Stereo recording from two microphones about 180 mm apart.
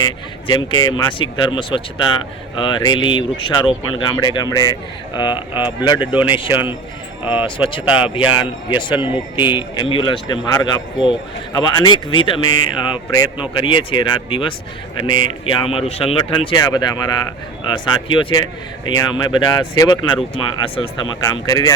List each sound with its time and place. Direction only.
0.0 s speech: 25° left (ahead or behind)